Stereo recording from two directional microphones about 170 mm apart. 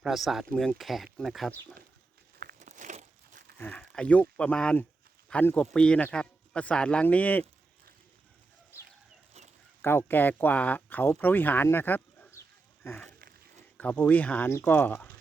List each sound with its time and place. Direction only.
0.0 s speech: centre (ahead or behind)
2.6 s crumpling: 45° right (ahead or behind)
3.6 s speech: 5° left (ahead or behind)
9.8 s speech: 15° left (ahead or behind)